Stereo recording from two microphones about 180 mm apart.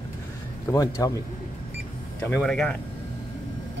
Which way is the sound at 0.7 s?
20° left (ahead or behind).